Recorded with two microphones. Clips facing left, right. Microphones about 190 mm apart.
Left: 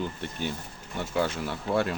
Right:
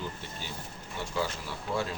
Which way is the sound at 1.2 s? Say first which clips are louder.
Left 6 dB; 60° left (ahead or behind).